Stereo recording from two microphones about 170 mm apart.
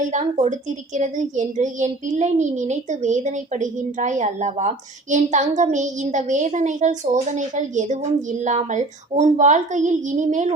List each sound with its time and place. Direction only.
0.0 s a child's voice: 45° right (ahead or behind)